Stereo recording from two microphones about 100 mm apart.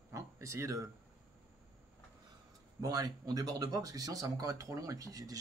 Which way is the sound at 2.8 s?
35° right (ahead or behind).